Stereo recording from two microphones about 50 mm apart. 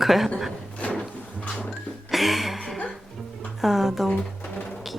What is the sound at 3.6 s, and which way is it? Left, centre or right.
Speech, centre.